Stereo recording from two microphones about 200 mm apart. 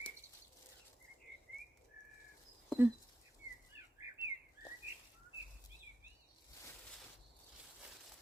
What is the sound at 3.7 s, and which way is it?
Bird, 10° right (ahead or behind).